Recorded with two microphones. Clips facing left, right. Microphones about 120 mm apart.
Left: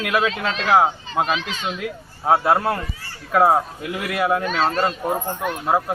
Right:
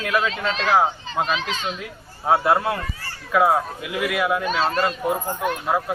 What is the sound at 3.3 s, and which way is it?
Speech, 35° left (ahead or behind).